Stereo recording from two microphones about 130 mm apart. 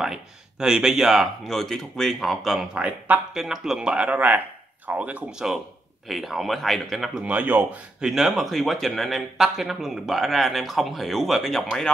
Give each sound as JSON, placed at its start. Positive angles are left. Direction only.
{"t": 0.0, "sound": "speech", "side_deg": -5}
{"t": 7.2, "sound": "speech", "side_deg": -15}